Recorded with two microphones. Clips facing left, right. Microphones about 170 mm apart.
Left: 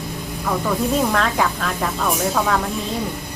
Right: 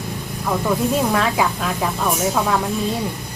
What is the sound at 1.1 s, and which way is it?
Speech, 10° right (ahead or behind).